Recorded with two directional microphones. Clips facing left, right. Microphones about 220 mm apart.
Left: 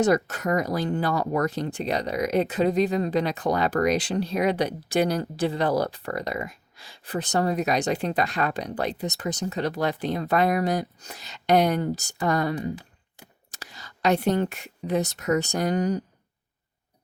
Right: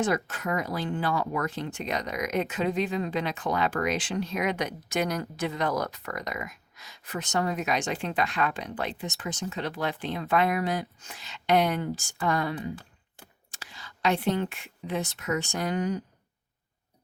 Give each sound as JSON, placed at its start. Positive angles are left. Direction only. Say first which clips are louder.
{"t": 0.0, "sound": "speech", "louder": "left 6 dB", "side_deg": 40}